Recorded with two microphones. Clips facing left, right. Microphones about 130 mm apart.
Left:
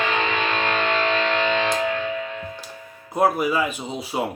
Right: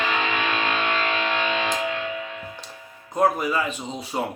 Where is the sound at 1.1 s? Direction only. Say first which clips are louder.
Left 3 dB; 10° right (ahead or behind).